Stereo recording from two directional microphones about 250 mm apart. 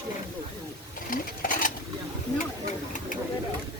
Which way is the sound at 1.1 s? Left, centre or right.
Left.